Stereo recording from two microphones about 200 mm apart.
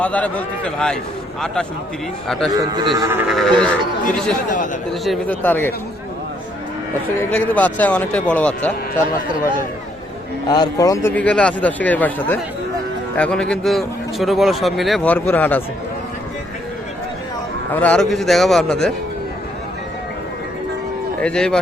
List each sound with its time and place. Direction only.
0.0 s speech: 5° left (ahead or behind)
2.2 s a man's voice: 5° left (ahead or behind)
2.5 s a man's voice: 20° right (ahead or behind)
3.1 s a man's voice: 5° right (ahead or behind)
4.9 s speech: 5° left (ahead or behind)
7.2 s speech: 5° left (ahead or behind)
10.5 s a man's voice: 20° left (ahead or behind)
17.7 s a man's voice: 5° left (ahead or behind)
21.2 s a man's voice: 5° left (ahead or behind)